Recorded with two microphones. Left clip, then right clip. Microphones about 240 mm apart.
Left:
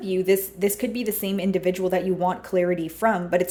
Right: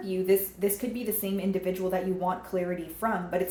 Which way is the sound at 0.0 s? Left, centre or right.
Left.